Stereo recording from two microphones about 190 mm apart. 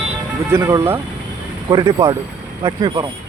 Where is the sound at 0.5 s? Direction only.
15° right (ahead or behind).